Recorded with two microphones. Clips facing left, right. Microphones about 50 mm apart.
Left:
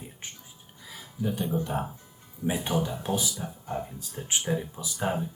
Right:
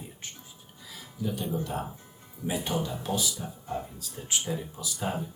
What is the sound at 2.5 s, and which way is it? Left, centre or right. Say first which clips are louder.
Speech: left 2 dB; left.